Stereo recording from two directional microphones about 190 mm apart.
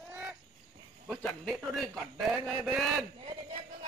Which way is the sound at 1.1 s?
5° left (ahead or behind).